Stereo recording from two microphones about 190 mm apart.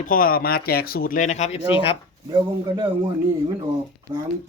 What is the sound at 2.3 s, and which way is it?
Speech, 25° right (ahead or behind).